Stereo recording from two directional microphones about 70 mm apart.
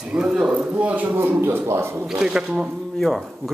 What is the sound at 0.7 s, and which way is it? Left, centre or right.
A man's voice, right.